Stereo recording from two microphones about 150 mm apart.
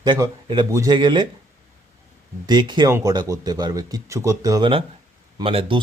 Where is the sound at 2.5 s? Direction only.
30° right (ahead or behind).